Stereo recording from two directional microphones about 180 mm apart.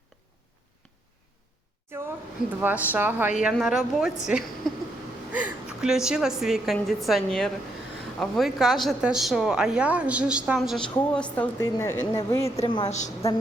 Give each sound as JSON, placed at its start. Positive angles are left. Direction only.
{"t": 2.6, "sound": "a woman's voice", "side_deg": -10}
{"t": 12.4, "sound": "a woman's voice", "side_deg": 30}